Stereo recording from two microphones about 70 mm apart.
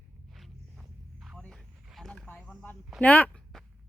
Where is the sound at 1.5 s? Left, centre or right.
Centre.